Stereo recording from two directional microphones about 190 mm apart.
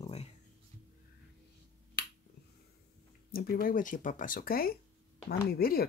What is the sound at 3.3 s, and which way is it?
Speech, 50° left (ahead or behind).